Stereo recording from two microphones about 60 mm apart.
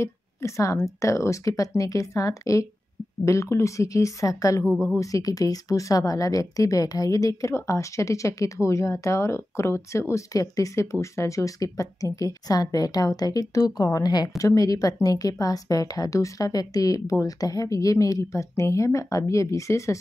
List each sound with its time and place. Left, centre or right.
0.0 s a woman's voice: left
3.3 s a woman's voice: left
4.6 s a woman's voice: centre
4.9 s a woman's voice: left